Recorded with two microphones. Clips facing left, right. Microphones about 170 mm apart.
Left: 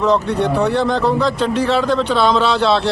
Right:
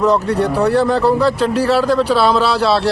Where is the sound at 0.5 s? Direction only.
5° right (ahead or behind).